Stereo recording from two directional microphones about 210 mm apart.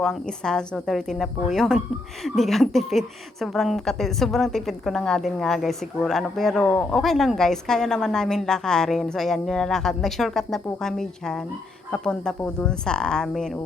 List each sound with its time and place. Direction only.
0.0 s a woman's voice: centre (ahead or behind)